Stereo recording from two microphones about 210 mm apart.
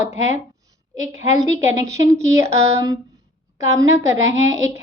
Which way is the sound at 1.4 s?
15° right (ahead or behind).